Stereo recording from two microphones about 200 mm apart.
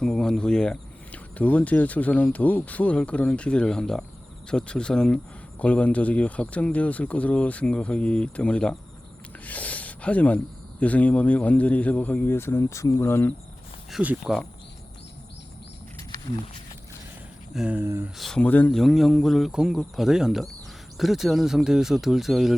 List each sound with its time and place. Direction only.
0.0 s speech: centre (ahead or behind)
13.9 s speech: 5° right (ahead or behind)
17.5 s speech: 5° right (ahead or behind)
18.2 s speech: 5° left (ahead or behind)